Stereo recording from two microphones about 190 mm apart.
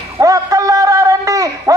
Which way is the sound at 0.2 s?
20° right (ahead or behind).